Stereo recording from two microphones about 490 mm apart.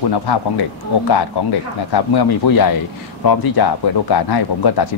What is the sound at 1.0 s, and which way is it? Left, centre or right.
A man's voice, left.